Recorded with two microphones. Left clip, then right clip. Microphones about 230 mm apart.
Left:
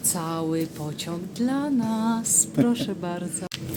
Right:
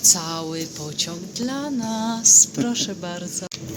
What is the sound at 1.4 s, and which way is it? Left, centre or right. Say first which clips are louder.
Female singing: left 1 dB; centre.